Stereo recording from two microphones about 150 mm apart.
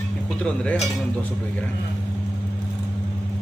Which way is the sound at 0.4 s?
5° left (ahead or behind).